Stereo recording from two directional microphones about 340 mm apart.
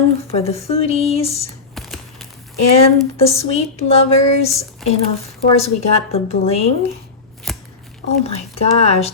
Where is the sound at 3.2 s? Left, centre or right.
Centre.